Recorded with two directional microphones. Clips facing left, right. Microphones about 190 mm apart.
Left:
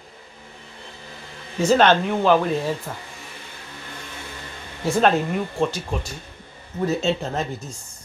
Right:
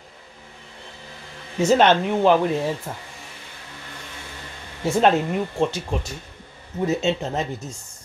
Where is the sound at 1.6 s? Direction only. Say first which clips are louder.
Even; 20° right (ahead or behind).